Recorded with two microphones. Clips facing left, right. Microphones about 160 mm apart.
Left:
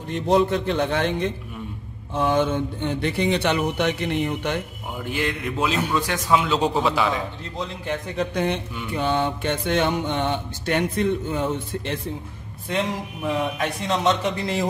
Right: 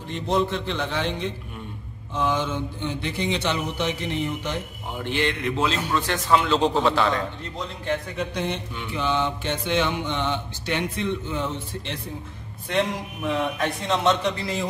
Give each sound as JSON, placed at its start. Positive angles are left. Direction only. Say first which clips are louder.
{"t": 0.1, "sound": "mantra", "louder": "left 4 dB", "side_deg": 50}
{"t": 2.1, "sound": "speech", "louder": "left 4 dB", "side_deg": 55}
{"t": 5.0, "sound": "a man's voice", "louder": "right 1 dB", "side_deg": 5}
{"t": 8.9, "sound": "mantra", "louder": "left 2 dB", "side_deg": 50}
{"t": 12.7, "sound": "a man's voice", "louder": "right 1 dB", "side_deg": 0}